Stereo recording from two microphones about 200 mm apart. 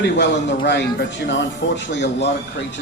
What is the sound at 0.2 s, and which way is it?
Speech, 60° left (ahead or behind).